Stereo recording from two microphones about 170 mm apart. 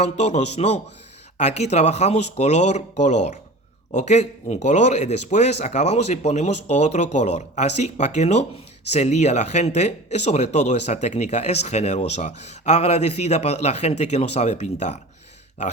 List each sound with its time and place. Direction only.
0.0 s speech: 40° left (ahead or behind)